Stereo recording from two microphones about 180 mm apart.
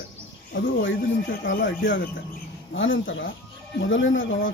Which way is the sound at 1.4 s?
90° left.